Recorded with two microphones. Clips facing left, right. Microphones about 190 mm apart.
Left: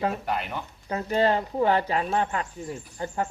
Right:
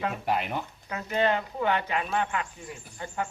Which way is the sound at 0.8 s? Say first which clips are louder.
Left 4 dB; 35° left (ahead or behind).